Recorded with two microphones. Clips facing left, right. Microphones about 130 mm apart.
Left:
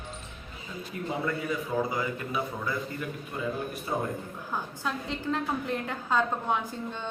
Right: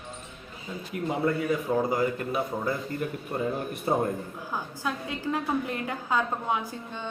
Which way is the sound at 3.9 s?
40° right (ahead or behind).